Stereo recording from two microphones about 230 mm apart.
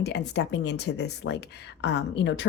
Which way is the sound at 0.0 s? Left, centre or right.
Left.